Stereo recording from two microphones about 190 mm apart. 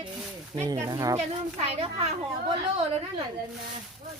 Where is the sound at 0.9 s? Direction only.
15° right (ahead or behind).